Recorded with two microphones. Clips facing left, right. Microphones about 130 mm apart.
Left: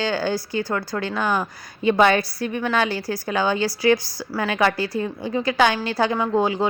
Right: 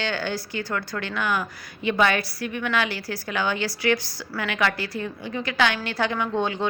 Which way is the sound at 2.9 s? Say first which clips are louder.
Left 5 dB; 15° left (ahead or behind).